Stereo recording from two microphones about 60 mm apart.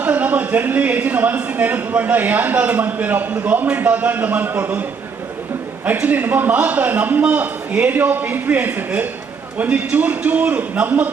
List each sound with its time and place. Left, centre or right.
0.0 s a man's voice: right
5.8 s a man's voice: right